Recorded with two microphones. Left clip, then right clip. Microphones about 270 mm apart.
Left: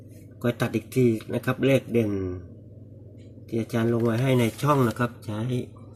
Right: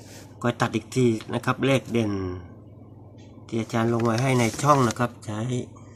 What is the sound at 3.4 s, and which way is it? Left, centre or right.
Speech, centre.